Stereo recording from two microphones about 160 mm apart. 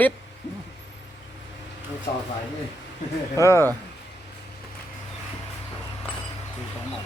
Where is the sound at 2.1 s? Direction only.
25° left (ahead or behind).